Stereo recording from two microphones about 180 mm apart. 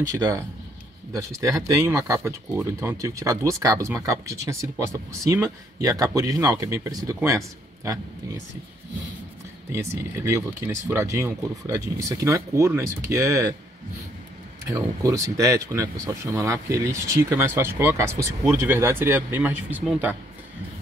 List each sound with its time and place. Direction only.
0.2 s speech: 20° right (ahead or behind)
9.7 s speech: 15° right (ahead or behind)
14.7 s speech: 15° right (ahead or behind)